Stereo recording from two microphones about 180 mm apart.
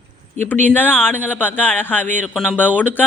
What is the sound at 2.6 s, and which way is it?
Speech, 10° left (ahead or behind).